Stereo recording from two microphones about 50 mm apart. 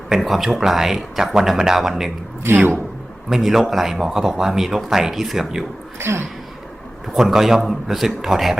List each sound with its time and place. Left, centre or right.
0.1 s speech: centre
3.2 s speech: centre
6.0 s a sound: right
7.2 s speech: centre